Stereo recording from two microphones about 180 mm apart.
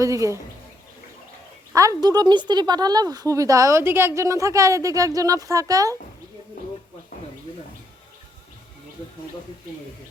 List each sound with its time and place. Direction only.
0.0 s speech: 15° right (ahead or behind)
1.7 s speech: 20° right (ahead or behind)